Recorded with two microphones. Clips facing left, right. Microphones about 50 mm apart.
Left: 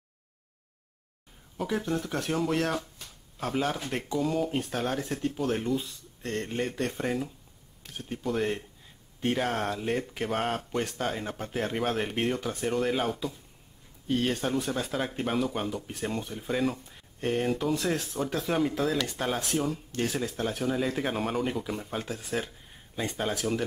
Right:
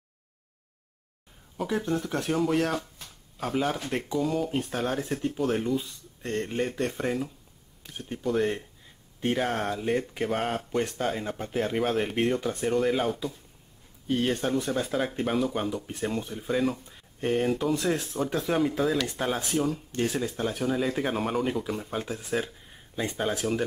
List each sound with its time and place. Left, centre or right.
1.6 s speech: centre
6.2 s speech: centre
6.6 s speech: centre
14.0 s speech: centre
14.5 s speech: centre